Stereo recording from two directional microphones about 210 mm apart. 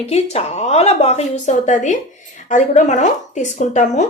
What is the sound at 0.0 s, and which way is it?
Speech, 30° left (ahead or behind).